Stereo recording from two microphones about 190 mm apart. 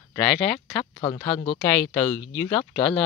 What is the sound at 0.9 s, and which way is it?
Speech, 25° left (ahead or behind).